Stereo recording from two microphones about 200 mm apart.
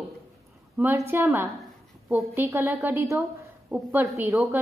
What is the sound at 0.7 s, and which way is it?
A woman's voice, 10° right (ahead or behind).